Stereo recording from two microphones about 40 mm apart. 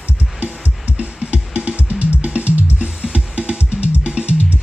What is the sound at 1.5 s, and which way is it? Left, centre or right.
Drum, right.